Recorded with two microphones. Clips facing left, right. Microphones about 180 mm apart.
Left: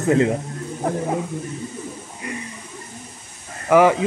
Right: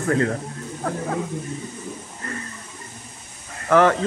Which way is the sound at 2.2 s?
15° left (ahead or behind).